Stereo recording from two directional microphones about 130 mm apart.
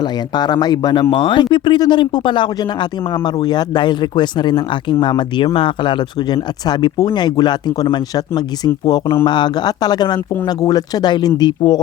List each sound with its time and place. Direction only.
0.0 s speech: 35° left (ahead or behind)